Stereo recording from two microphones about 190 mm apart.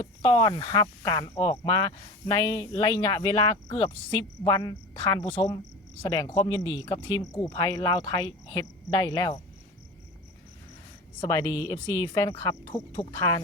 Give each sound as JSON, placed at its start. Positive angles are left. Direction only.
{"t": 0.0, "sound": "speech", "side_deg": 25}
{"t": 11.2, "sound": "speech", "side_deg": 20}
{"t": 13.0, "sound": "speech", "side_deg": 25}